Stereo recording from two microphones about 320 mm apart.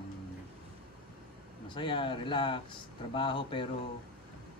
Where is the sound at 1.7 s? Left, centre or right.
Centre.